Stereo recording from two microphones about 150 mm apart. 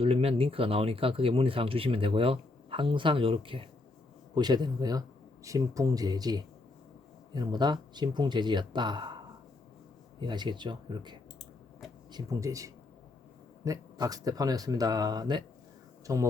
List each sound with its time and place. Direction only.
0.0 s speech: 40° right (ahead or behind)
10.2 s speech: 30° right (ahead or behind)